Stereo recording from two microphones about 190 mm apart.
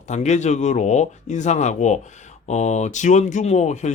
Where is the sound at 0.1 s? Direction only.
35° left (ahead or behind).